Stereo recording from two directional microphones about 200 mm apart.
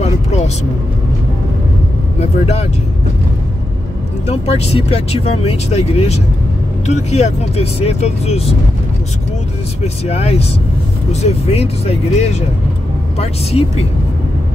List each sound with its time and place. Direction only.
0.0 s vehicle: 35° left (ahead or behind)
2.1 s speech: 35° left (ahead or behind)
4.3 s speech: 30° left (ahead or behind)
10.0 s speech: 30° left (ahead or behind)